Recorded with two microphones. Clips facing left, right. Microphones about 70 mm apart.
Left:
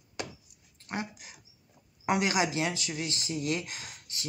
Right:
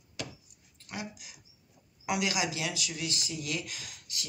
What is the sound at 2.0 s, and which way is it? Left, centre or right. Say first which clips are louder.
Speech: left 4 dB; left.